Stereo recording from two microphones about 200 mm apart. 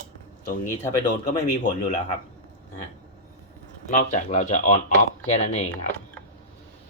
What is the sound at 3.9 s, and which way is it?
A man's voice, 35° left (ahead or behind).